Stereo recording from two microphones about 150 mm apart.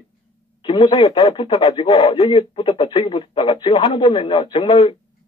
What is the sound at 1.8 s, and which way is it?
A man's voice, 40° left (ahead or behind).